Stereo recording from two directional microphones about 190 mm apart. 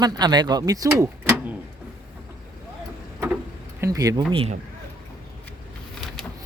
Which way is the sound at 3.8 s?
15° right (ahead or behind).